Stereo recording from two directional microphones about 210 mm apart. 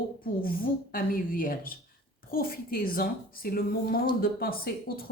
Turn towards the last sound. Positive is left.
turn(degrees=45)  # may be behind; listen again after turning